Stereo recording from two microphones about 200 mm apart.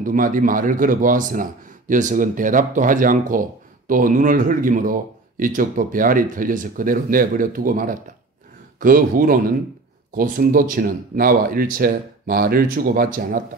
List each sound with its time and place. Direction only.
0.0 s speech: 40° right (ahead or behind)